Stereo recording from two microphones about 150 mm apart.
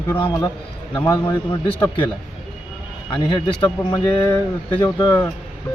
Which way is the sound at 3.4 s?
35° left (ahead or behind).